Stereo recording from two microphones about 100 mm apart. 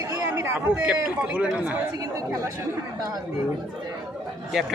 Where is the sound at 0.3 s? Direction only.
25° right (ahead or behind).